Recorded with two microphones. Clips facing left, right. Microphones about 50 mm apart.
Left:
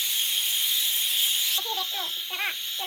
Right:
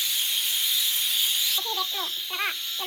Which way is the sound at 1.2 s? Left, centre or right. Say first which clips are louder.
Even; centre.